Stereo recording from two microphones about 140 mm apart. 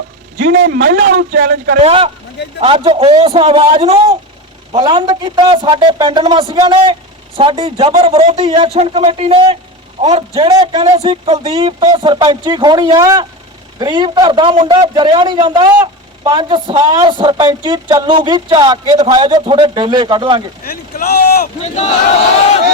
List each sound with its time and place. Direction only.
0.7 s speech: 80° right
1.8 s a man's voice: 40° right (ahead or behind)
4.8 s a man's voice: 30° right (ahead or behind); by 10.5 s 45° right (ahead or behind)
10.7 s a man's voice: 30° right (ahead or behind)
10.9 s a man's voice: 45° right (ahead or behind)
20.7 s speech: 90° left
21.6 s speech: 55° left (ahead or behind)